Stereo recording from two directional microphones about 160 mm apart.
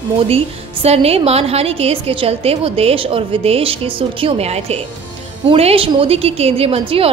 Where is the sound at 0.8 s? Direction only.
40° right (ahead or behind).